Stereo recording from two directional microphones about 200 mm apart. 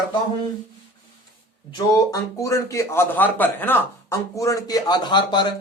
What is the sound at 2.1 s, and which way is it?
A man's voice, 15° left (ahead or behind).